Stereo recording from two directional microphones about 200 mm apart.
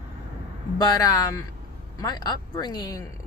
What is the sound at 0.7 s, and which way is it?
Speech, 20° left (ahead or behind).